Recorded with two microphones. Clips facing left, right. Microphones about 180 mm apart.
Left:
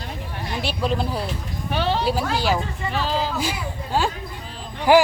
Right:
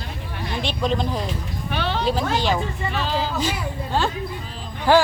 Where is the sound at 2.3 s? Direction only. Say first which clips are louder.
Even; 10° left (ahead or behind).